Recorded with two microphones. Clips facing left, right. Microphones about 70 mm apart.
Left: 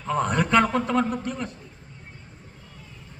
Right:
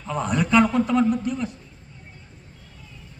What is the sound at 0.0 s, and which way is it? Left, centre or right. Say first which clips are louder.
A man's voice: left 1 dB; left.